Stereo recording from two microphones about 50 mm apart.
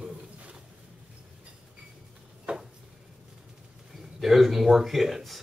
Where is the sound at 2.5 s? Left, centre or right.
Right.